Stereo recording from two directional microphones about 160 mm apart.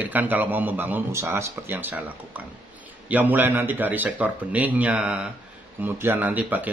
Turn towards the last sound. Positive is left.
turn(degrees=-10)  # may be behind; listen again after turning